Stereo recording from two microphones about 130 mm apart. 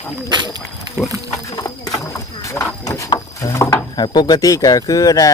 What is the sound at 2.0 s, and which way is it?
Speech, 20° left (ahead or behind).